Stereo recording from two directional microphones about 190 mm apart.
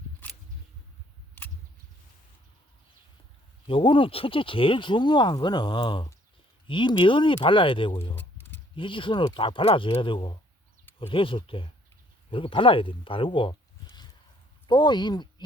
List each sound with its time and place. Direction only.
3.7 s speech: 25° left (ahead or behind)
8.1 s a sound: 10° left (ahead or behind)
8.7 s speech: 25° left (ahead or behind)